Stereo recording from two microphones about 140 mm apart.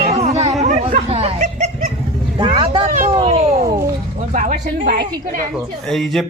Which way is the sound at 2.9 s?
60° right (ahead or behind).